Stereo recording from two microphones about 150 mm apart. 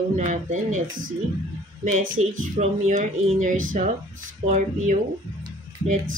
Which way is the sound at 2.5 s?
55° right (ahead or behind).